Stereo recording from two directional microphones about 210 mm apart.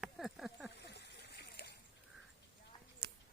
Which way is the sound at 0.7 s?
55° left (ahead or behind).